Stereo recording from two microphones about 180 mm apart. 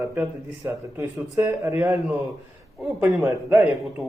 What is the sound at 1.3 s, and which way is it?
Speech, 15° right (ahead or behind).